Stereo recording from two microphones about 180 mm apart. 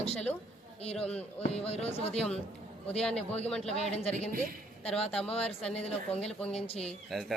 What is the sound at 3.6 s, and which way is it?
Speech, 35° left (ahead or behind).